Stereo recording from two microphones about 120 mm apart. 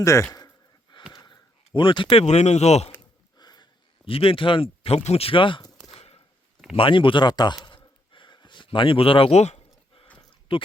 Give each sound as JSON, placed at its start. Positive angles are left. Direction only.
{"t": 0.0, "sound": "speech", "side_deg": 25}
{"t": 0.3, "sound": "a sound", "side_deg": 35}
{"t": 2.2, "sound": "speech", "side_deg": 65}
{"t": 3.3, "sound": "sniff", "side_deg": 35}
{"t": 4.0, "sound": "speech", "side_deg": 50}
{"t": 6.0, "sound": "chopping", "side_deg": 55}
{"t": 6.7, "sound": "speech", "side_deg": 45}
{"t": 8.1, "sound": "a sound", "side_deg": 40}
{"t": 10.5, "sound": "speech", "side_deg": 50}